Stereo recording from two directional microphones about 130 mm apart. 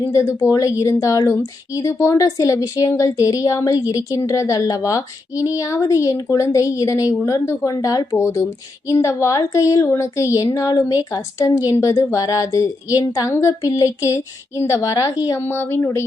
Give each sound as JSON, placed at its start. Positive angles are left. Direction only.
{"t": 0.1, "sound": "speech", "side_deg": 20}